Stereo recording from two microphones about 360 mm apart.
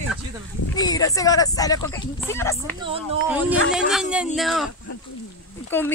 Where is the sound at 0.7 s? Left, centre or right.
Centre.